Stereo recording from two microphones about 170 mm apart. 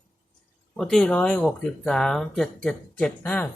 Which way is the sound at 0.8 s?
5° left (ahead or behind).